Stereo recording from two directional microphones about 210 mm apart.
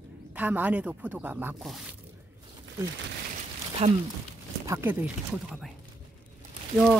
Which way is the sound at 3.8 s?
30° right (ahead or behind).